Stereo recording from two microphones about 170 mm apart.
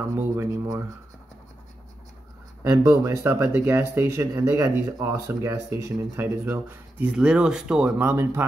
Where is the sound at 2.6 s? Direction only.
20° right (ahead or behind).